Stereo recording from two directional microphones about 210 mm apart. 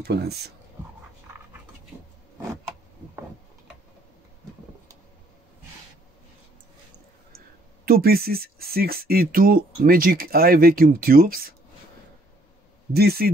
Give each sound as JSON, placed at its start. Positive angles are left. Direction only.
{"t": 0.0, "sound": "speech", "side_deg": -50}
{"t": 7.8, "sound": "speech", "side_deg": -45}
{"t": 12.9, "sound": "speech", "side_deg": -50}